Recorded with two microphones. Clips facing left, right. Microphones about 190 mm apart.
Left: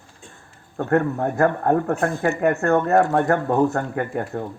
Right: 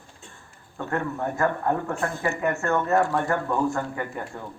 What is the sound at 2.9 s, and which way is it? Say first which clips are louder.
Speech: left 5 dB; 45° left (ahead or behind).